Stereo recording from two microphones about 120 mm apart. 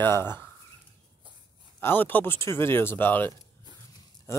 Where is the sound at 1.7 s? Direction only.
15° left (ahead or behind).